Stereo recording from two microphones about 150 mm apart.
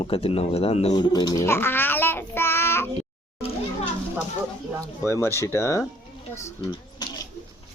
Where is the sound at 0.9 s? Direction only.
25° left (ahead or behind).